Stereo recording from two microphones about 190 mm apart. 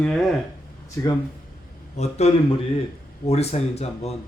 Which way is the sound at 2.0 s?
35° left (ahead or behind).